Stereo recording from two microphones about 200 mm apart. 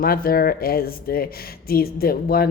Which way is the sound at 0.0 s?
50° left (ahead or behind).